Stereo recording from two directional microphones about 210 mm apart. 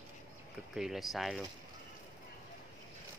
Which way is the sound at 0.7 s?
Centre (ahead or behind).